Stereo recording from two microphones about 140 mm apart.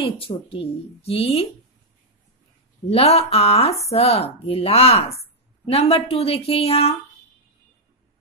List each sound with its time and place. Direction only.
0.0 s speech: 40° left (ahead or behind)
2.9 s speech: 45° left (ahead or behind)